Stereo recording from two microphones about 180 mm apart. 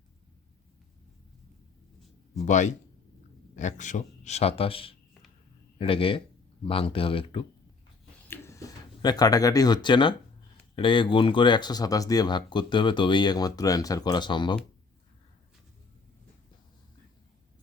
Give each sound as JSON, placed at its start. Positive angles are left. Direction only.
{"t": 2.4, "sound": "speech", "side_deg": 40}
{"t": 8.3, "sound": "a sound", "side_deg": 15}
{"t": 10.8, "sound": "speech", "side_deg": 30}